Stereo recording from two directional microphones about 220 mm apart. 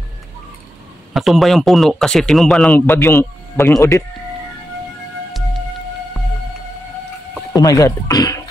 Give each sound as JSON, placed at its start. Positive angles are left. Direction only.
{"t": 1.1, "sound": "a man's voice", "side_deg": 0}
{"t": 7.5, "sound": "speech", "side_deg": 15}